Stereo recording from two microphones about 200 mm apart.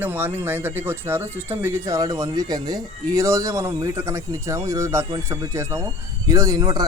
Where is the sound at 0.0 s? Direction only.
10° right (ahead or behind).